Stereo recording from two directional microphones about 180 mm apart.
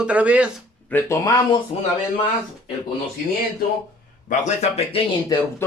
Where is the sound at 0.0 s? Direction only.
5° right (ahead or behind).